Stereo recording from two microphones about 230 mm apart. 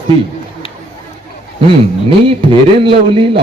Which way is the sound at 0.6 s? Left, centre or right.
Left.